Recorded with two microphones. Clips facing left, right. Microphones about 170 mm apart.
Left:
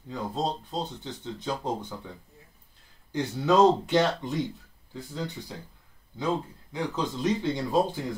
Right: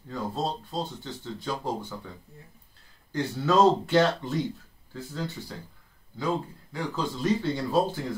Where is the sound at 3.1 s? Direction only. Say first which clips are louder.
Left 1 dB; 20° left (ahead or behind).